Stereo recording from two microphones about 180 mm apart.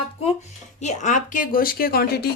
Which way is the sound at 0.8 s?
45° left (ahead or behind).